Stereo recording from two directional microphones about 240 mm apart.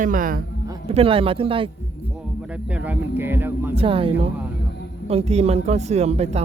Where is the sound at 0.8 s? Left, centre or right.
Right.